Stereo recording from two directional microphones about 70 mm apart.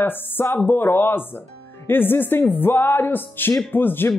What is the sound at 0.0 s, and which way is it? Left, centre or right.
Speech, left.